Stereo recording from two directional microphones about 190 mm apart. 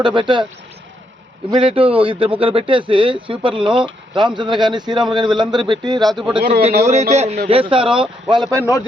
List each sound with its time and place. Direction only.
0.0 s speech: 25° right (ahead or behind)
1.5 s speech: 30° right (ahead or behind)
6.0 s speech: centre (ahead or behind)
7.1 s speech: 35° right (ahead or behind); by 8.6 s 20° right (ahead or behind)
8.6 s a man's voice: 20° left (ahead or behind)